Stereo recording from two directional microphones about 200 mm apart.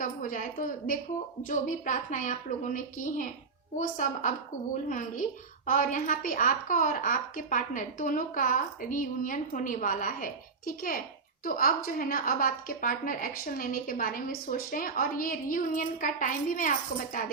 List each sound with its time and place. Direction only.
0.0 s a woman's voice: 40° left (ahead or behind)